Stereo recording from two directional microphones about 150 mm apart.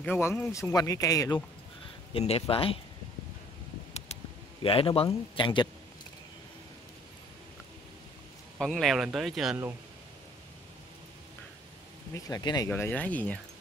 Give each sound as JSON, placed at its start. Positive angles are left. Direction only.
{"t": 0.0, "sound": "speech", "side_deg": 15}
{"t": 2.1, "sound": "a man's voice", "side_deg": 40}
{"t": 4.6, "sound": "a man's voice", "side_deg": 40}
{"t": 8.5, "sound": "speech", "side_deg": 0}
{"t": 12.1, "sound": "speech", "side_deg": 25}
{"t": 12.6, "sound": "speech", "side_deg": 10}